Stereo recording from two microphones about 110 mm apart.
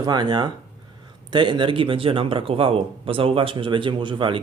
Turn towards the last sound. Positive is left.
turn(degrees=-50)  # may be behind; listen again after turning